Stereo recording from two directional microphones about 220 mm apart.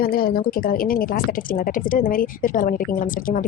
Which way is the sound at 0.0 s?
40° left (ahead or behind).